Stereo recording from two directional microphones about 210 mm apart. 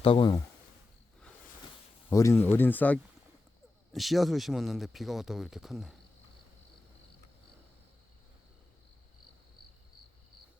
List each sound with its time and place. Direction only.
0.0 s speech: 25° left (ahead or behind)
2.0 s speech: 10° left (ahead or behind)